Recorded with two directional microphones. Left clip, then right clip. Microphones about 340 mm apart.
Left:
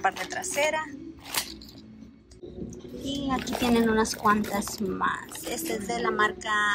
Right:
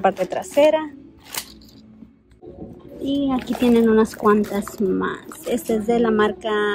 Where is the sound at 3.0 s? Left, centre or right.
Centre.